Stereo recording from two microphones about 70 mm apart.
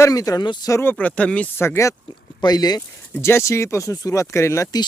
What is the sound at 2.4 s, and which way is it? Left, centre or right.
Speech, left.